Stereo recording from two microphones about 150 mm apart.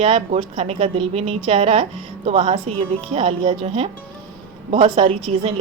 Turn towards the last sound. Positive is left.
turn(degrees=-40)  # may be behind; listen again after turning